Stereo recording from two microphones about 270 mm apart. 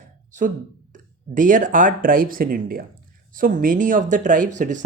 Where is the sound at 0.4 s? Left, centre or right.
Right.